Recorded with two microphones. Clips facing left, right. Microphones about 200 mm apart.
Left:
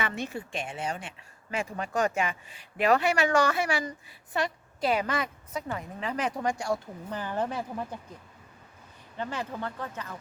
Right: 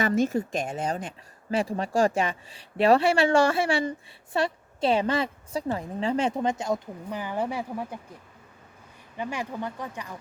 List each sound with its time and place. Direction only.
0.0 s speech: 40° right (ahead or behind); by 7.9 s 10° right (ahead or behind)
9.1 s speech: 10° right (ahead or behind)